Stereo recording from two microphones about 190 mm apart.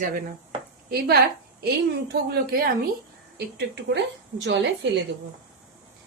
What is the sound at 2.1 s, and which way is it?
Speech, 55° right (ahead or behind).